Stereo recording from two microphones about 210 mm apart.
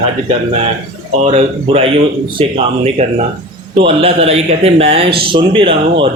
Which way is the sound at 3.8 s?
30° right (ahead or behind).